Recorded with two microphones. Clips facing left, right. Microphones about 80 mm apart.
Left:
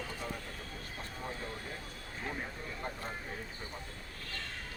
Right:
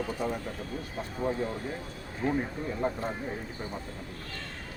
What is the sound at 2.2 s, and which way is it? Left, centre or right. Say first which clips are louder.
Speech: right 11 dB; right.